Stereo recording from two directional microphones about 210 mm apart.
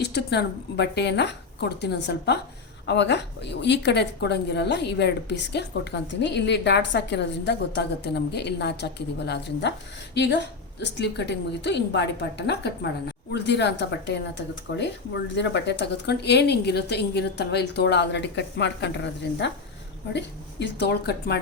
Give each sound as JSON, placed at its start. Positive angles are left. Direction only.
{"t": 0.0, "sound": "a woman's voice", "side_deg": 50}